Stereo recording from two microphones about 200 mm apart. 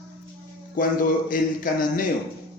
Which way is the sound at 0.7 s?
45° left (ahead or behind).